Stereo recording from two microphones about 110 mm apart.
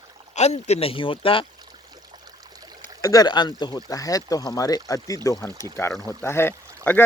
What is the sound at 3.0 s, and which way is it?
Speech, 35° left (ahead or behind).